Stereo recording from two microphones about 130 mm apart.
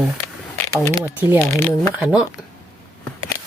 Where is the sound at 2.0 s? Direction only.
5° right (ahead or behind).